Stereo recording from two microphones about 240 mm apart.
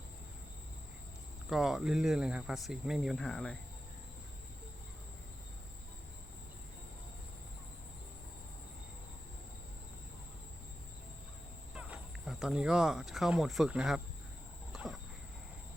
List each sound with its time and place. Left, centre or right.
1.5 s speech: centre
11.7 s speech: centre
14.7 s a sound: centre